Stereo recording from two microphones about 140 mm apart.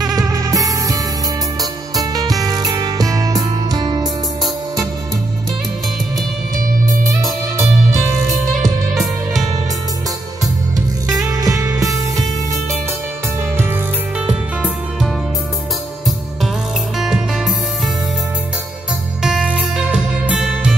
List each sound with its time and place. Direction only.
0.0 s music: 25° right (ahead or behind)
7.5 s music: 20° right (ahead or behind)
8.6 s music: centre (ahead or behind)
11.1 s music: 25° right (ahead or behind)
13.6 s music: 10° right (ahead or behind)
17.0 s music: 5° right (ahead or behind)
19.2 s music: 5° right (ahead or behind)